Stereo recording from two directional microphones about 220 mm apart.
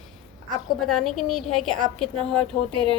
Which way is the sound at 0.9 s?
Centre (ahead or behind).